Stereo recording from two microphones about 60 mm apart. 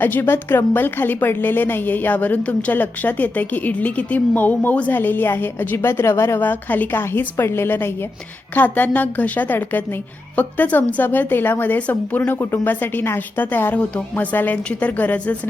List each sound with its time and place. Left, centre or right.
0.0 s a woman's voice: left
6.4 s a woman's voice: left
13.7 s a woman's voice: centre